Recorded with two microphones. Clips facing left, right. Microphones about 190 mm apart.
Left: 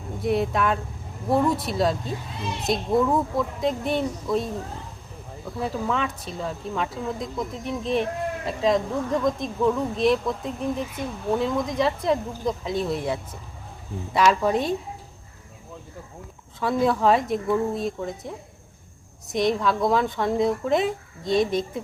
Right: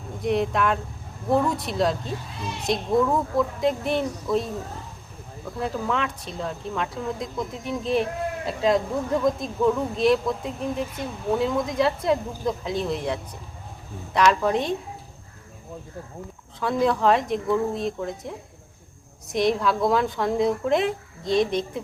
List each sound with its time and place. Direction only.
0.2 s speech: centre (ahead or behind)
5.5 s speech: centre (ahead or behind)
16.6 s speech: centre (ahead or behind)